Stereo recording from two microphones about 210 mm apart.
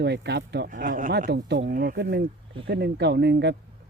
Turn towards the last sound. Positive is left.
turn(degrees=-55)  # may be behind; listen again after turning